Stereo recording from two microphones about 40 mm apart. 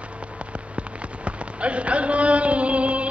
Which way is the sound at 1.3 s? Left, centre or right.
Right.